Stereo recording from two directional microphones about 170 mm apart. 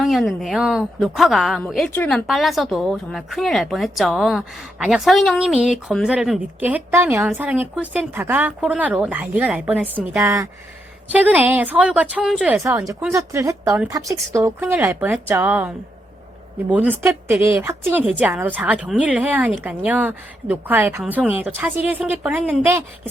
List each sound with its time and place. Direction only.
0.0 s a woman's voice: centre (ahead or behind)
12.9 s speech: 15° right (ahead or behind)